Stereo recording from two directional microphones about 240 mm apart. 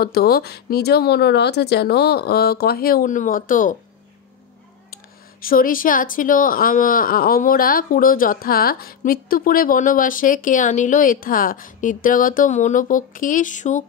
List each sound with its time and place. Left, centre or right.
0.0 s speech: left
4.9 s speech: left